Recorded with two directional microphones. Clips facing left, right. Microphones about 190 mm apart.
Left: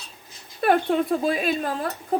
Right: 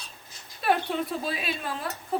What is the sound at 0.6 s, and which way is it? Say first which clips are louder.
A woman's voice: left 6 dB; 55° left (ahead or behind).